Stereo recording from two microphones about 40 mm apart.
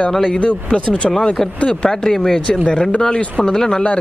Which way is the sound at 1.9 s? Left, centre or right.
Centre.